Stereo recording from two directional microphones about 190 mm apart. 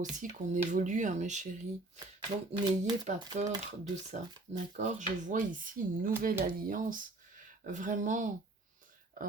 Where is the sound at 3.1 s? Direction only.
40° right (ahead or behind).